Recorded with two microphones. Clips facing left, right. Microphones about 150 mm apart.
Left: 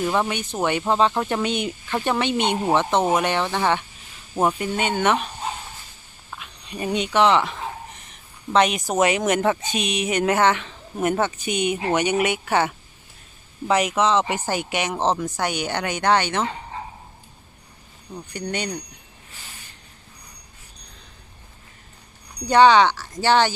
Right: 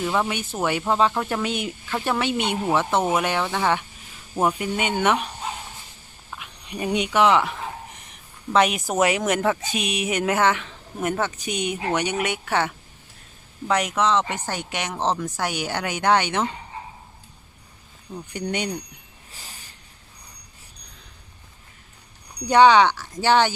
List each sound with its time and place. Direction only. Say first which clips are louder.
0.0 s speech: left 1 dB; centre (ahead or behind)
6.3 s speech: even; 15° right (ahead or behind)
8.5 s speech: left 1 dB; 5° right (ahead or behind)
18.1 s speech: right 1 dB; 10° right (ahead or behind)
19.3 s a sound: even; 35° right (ahead or behind)
22.4 s speech: even; 10° right (ahead or behind)